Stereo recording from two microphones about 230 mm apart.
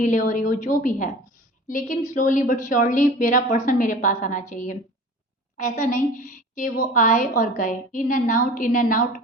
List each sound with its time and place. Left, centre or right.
0.0 s a woman's voice: left